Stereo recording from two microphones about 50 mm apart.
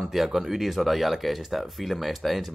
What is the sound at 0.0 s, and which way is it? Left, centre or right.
Speech, centre.